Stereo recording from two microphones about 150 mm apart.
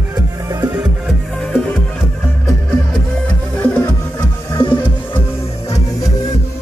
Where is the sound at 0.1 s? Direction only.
25° right (ahead or behind).